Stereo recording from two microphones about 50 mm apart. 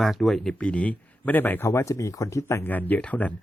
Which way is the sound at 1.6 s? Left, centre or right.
Left.